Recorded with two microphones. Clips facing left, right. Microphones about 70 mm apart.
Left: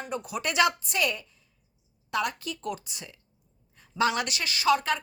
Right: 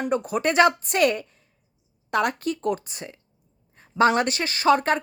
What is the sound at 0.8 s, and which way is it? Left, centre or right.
A woman's voice, right.